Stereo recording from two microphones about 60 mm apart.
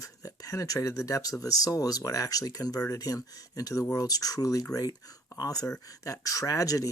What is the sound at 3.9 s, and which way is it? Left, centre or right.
Speech, left.